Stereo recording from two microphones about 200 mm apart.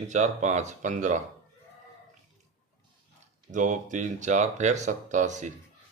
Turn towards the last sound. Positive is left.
turn(degrees=-35)  # may be behind; listen again after turning